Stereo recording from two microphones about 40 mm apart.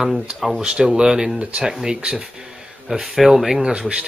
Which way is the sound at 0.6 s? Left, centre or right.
Centre.